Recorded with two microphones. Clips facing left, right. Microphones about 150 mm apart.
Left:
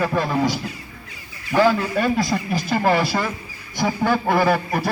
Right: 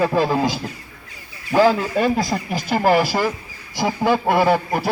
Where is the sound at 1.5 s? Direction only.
35° right (ahead or behind).